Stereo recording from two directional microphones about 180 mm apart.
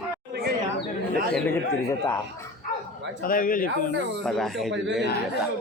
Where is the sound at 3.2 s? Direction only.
50° left (ahead or behind).